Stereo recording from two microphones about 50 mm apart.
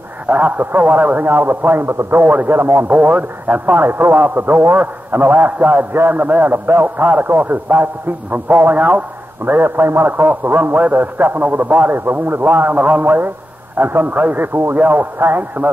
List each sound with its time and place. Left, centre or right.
0.3 s a man's voice: right
2.9 s a man's voice: right
3.8 s a man's voice: right
10.0 s a man's voice: right